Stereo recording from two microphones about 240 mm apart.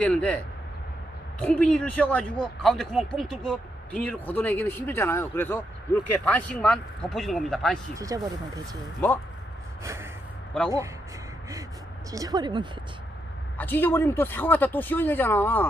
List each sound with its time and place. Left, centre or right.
0.0 s speech: centre
1.4 s speech: centre
7.9 s speech: centre
9.0 s speech: centre
9.8 s snort: centre
10.5 s speech: centre
12.1 s speech: centre
13.6 s speech: centre